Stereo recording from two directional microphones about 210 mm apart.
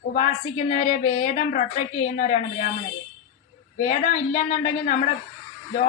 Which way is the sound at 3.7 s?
35° left (ahead or behind).